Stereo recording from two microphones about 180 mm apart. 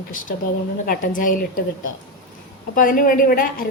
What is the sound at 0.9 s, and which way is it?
A woman's voice, 50° left (ahead or behind).